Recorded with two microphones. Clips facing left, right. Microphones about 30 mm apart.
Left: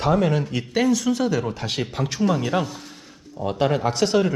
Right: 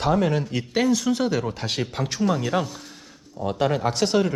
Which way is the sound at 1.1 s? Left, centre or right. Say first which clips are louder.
Left 1 dB; right.